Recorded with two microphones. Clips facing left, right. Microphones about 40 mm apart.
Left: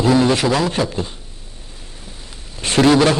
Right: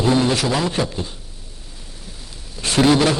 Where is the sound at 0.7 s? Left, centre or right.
Centre.